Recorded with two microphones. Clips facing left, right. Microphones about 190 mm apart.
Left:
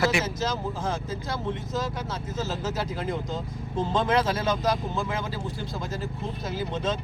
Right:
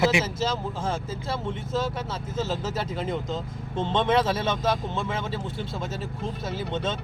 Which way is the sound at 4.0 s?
Centre (ahead or behind).